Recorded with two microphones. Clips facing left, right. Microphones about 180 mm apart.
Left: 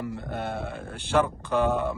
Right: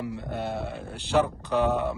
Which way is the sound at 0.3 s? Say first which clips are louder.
Right 1 dB; 55° left (ahead or behind).